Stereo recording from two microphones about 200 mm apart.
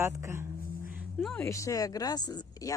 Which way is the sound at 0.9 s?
Centre (ahead or behind).